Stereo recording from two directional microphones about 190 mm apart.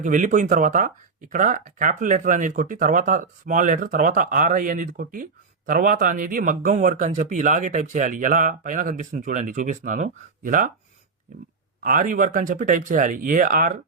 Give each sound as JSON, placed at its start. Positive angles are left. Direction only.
{"t": 0.0, "sound": "speech", "side_deg": -40}
{"t": 11.8, "sound": "speech", "side_deg": -45}